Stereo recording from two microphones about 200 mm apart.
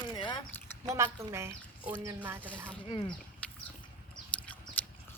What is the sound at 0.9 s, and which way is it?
Speech, 15° right (ahead or behind).